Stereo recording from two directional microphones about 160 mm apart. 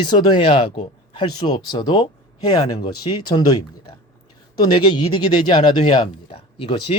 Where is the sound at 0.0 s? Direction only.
30° left (ahead or behind).